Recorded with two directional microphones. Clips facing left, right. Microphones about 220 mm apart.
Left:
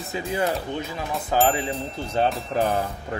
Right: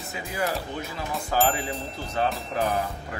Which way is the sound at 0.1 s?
25° left (ahead or behind).